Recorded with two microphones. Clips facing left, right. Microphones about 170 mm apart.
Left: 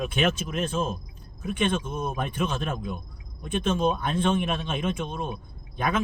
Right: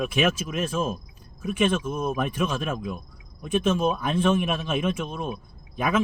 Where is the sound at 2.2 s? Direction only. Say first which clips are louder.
Right 2 dB; 10° right (ahead or behind).